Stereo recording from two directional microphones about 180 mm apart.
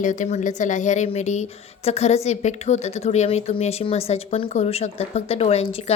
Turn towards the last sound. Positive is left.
turn(degrees=35)  # may be behind; listen again after turning